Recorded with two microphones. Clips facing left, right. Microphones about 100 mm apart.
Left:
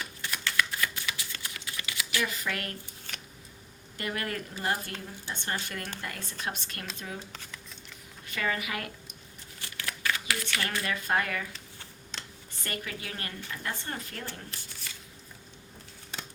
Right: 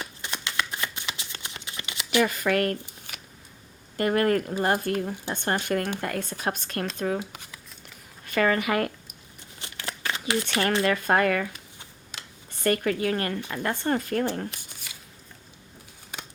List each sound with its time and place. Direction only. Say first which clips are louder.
0.2 s shuffling cards: left 1 dB; 20° right (ahead or behind)
2.2 s speech: right 11 dB; 55° right (ahead or behind)
3.1 s a sound: left 1 dB; 10° right (ahead or behind)
3.9 s speech: right 12 dB; 45° right (ahead or behind)
8.3 s speech: right 9 dB; 55° right (ahead or behind)
9.6 s crumpling: right 2 dB; 25° right (ahead or behind)
10.8 s speech: right 6 dB; 55° right (ahead or behind)
11.5 s a sound: right 1 dB; 15° right (ahead or behind)
12.6 s speech: right 14 dB; 55° right (ahead or behind)
14.5 s a sound: even; 15° right (ahead or behind)